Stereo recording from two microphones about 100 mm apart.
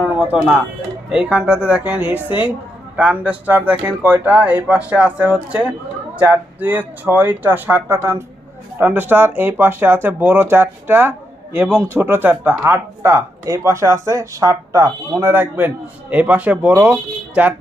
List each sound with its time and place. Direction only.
0.0 s music: 15° right (ahead or behind)
1.1 s speech: 10° right (ahead or behind); by 15.3 s 30° right (ahead or behind)
15.3 s speech: 20° right (ahead or behind)